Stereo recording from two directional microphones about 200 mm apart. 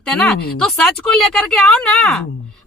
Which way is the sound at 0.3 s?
50° left (ahead or behind).